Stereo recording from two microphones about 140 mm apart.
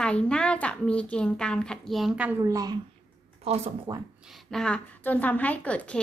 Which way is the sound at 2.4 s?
25° right (ahead or behind).